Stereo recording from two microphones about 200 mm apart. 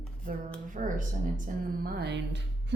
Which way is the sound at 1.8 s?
55° right (ahead or behind).